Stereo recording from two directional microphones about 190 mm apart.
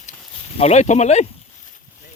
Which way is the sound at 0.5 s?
35° left (ahead or behind).